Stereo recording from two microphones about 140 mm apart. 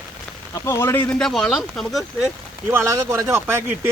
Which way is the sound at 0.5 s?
20° left (ahead or behind).